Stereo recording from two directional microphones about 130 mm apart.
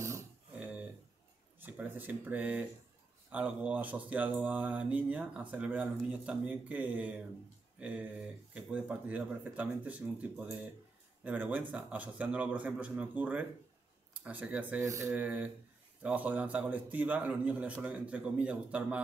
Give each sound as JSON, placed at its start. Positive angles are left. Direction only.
{"t": 1.6, "sound": "speech", "side_deg": -15}
{"t": 14.8, "sound": "speech", "side_deg": -20}
{"t": 15.1, "sound": "speech", "side_deg": -10}